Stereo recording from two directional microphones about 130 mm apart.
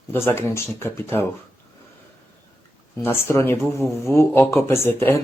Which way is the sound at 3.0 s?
15° left (ahead or behind).